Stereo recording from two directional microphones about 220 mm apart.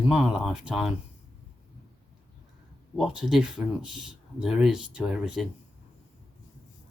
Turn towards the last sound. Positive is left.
turn(degrees=0)  # may be behind; listen again after turning